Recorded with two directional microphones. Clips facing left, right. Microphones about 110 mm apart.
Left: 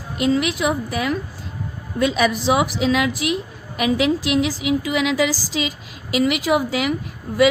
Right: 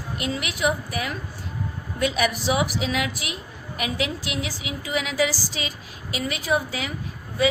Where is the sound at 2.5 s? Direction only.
90° left.